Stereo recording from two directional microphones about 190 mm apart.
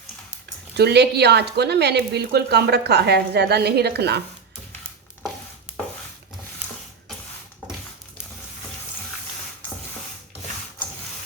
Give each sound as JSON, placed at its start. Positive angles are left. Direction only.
{"t": 0.8, "sound": "speech", "side_deg": -60}